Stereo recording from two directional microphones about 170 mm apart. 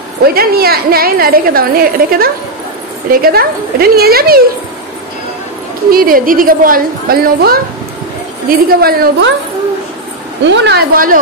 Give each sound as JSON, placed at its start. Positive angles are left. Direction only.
{"t": 0.2, "sound": "a woman's voice", "side_deg": -60}
{"t": 5.9, "sound": "a woman's voice", "side_deg": -60}
{"t": 10.4, "sound": "speech", "side_deg": -90}